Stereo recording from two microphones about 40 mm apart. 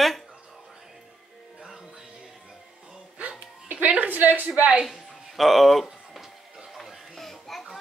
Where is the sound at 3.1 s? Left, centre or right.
Right.